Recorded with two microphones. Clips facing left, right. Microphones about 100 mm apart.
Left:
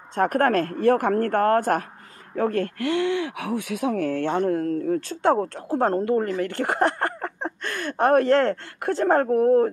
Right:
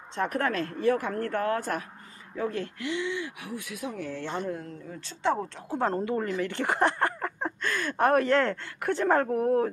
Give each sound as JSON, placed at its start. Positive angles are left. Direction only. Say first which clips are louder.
{"t": 0.1, "sound": "speech", "louder": "left 8 dB", "side_deg": 50}
{"t": 7.6, "sound": "speech", "louder": "even", "side_deg": 50}
{"t": 8.0, "sound": "speech", "louder": "left 5 dB", "side_deg": 35}